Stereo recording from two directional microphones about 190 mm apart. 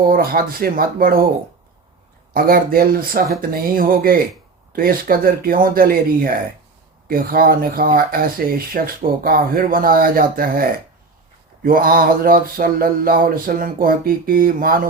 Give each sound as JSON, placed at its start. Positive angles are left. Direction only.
{"t": 0.0, "sound": "speech", "side_deg": -50}
{"t": 2.3, "sound": "speech", "side_deg": -50}